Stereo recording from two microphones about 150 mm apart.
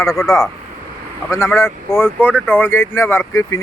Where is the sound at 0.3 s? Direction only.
15° left (ahead or behind).